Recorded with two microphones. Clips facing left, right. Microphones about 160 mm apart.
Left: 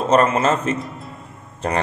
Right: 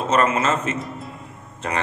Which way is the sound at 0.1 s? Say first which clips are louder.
Left 3 dB; 35° left (ahead or behind).